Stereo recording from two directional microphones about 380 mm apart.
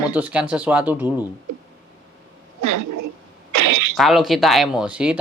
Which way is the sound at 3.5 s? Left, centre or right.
Right.